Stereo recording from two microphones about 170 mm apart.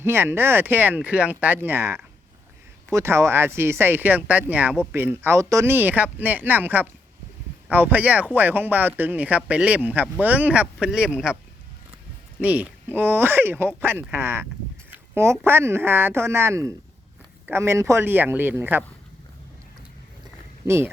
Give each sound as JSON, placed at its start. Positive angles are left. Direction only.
{"t": 0.0, "sound": "speech", "side_deg": -15}
{"t": 12.4, "sound": "speech", "side_deg": -10}
{"t": 20.7, "sound": "speech", "side_deg": -15}